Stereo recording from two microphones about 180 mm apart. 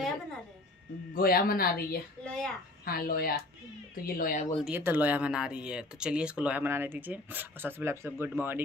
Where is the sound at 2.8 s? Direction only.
55° left (ahead or behind).